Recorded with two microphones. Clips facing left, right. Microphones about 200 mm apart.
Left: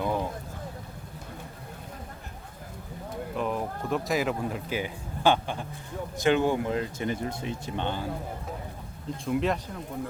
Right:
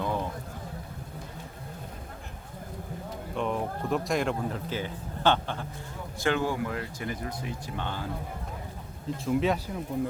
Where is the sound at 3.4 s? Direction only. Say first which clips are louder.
Right 1 dB; centre (ahead or behind); by 8.1 s 20° left (ahead or behind).